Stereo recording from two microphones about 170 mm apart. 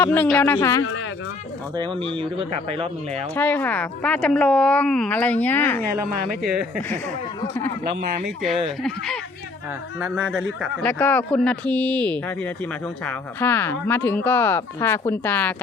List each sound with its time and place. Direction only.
0.0 s speech: 10° left (ahead or behind)
1.7 s speech: 30° right (ahead or behind)
3.3 s speech: 10° left (ahead or behind)
8.4 s speech: centre (ahead or behind)
10.2 s speech: centre (ahead or behind)
10.8 s speech: 10° left (ahead or behind)